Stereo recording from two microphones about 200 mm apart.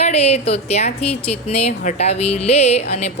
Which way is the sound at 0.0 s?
30° left (ahead or behind).